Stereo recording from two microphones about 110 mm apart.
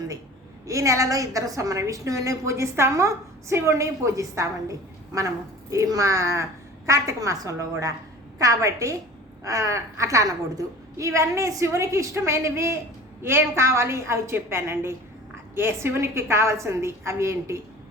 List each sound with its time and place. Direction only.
0.7 s a woman's voice: 30° right (ahead or behind)